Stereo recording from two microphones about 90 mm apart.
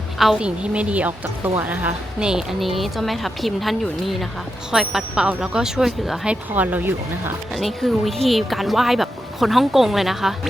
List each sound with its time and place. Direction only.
0.2 s a woman's voice: 5° right (ahead or behind)
6.5 s speech: 20° right (ahead or behind)
7.5 s a woman's voice: centre (ahead or behind)